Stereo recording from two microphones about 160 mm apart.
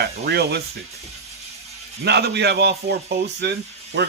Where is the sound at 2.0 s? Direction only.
90° right.